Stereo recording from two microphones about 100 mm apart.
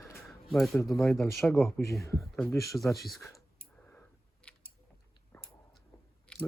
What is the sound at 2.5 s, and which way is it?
Speech, 30° left (ahead or behind).